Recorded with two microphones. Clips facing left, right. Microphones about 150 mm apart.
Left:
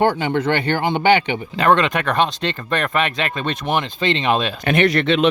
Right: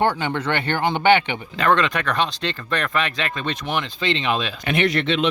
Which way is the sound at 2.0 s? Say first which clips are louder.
Left 4 dB; 50° left (ahead or behind).